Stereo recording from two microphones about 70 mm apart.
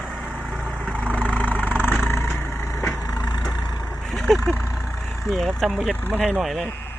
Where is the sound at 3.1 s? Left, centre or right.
Left.